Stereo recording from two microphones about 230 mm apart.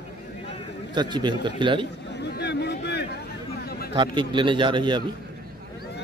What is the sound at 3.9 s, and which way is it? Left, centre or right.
A man's voice, right.